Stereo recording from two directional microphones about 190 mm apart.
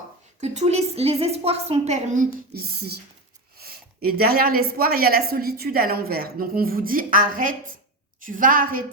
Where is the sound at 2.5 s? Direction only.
55° right (ahead or behind).